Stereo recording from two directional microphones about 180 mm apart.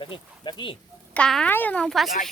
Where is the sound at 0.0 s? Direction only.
25° left (ahead or behind).